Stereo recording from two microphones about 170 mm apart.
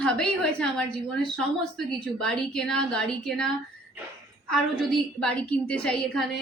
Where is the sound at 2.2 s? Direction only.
5° left (ahead or behind).